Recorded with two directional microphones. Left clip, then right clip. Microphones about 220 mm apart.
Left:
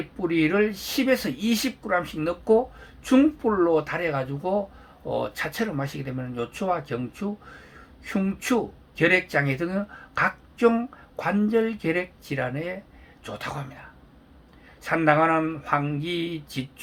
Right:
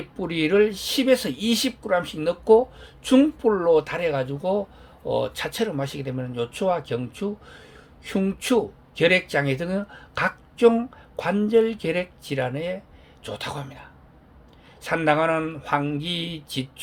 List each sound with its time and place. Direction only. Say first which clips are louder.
0.2 s speech: right 2 dB; 40° right (ahead or behind)